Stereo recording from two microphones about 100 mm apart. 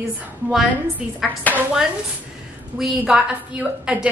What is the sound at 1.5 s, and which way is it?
Speech, 15° left (ahead or behind).